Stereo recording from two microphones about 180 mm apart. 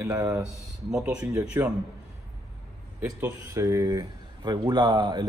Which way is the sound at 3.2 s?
15° right (ahead or behind).